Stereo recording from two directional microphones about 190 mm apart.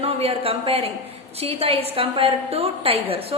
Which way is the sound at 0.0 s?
30° right (ahead or behind).